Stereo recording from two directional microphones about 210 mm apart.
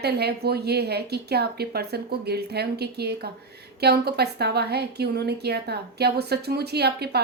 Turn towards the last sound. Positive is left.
turn(degrees=-50)  # may be behind; listen again after turning